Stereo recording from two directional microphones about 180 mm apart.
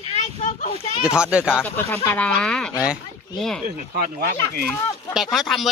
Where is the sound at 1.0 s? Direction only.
5° right (ahead or behind).